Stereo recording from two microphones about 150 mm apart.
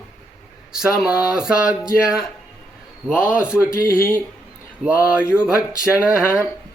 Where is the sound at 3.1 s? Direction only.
5° right (ahead or behind).